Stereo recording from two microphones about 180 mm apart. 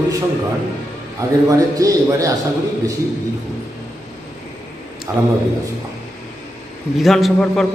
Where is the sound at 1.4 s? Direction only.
20° right (ahead or behind).